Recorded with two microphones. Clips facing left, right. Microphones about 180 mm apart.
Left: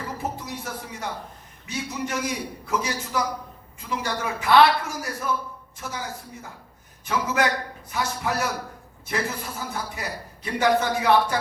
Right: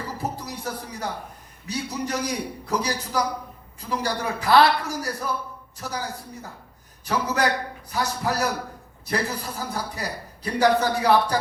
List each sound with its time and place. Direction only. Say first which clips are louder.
0.2 s music: even; 35° right (ahead or behind)
1.6 s a man's voice: right 1 dB; 35° right (ahead or behind)